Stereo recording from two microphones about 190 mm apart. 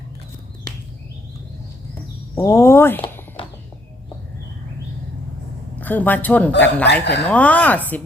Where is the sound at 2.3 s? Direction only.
15° left (ahead or behind).